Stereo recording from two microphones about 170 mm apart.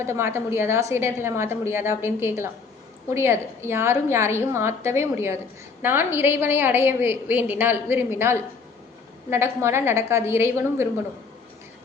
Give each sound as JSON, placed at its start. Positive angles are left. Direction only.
{"t": 0.0, "sound": "a woman's voice", "side_deg": -15}